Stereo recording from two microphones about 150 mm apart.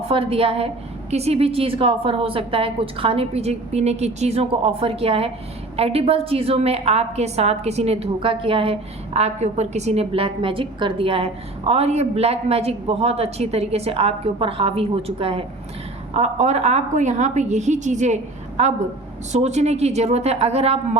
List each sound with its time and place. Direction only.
0.1 s a woman's voice: 40° right (ahead or behind)
16.1 s a woman's voice: 50° right (ahead or behind)